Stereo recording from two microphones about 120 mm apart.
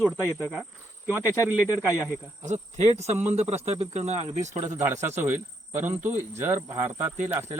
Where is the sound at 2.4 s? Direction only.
80° right.